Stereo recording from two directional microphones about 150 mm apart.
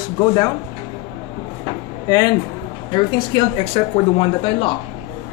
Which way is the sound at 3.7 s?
40° left (ahead or behind).